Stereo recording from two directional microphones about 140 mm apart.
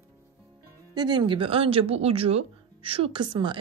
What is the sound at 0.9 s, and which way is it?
Speech, 30° right (ahead or behind).